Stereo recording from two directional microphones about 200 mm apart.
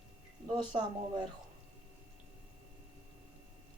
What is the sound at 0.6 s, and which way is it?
Speech, 25° right (ahead or behind).